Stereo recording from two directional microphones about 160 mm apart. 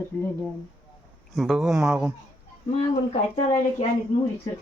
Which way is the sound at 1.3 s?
Centre (ahead or behind).